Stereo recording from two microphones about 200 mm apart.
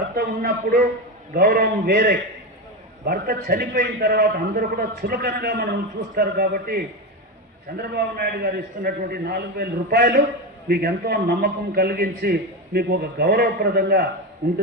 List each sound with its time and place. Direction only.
0.2 s a man's voice: 45° right (ahead or behind)